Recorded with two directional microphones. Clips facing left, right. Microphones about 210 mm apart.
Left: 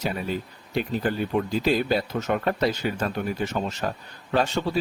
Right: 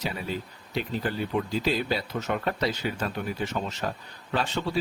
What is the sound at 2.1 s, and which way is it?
Speech, 45° left (ahead or behind).